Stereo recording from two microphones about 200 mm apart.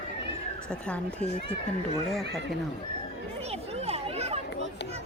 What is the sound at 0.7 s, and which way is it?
Speech, 5° left (ahead or behind).